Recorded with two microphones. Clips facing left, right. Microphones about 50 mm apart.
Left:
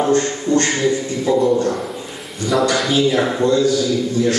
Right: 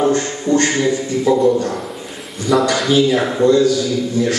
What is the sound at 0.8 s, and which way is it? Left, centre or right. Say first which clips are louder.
Music: right 2 dB; centre.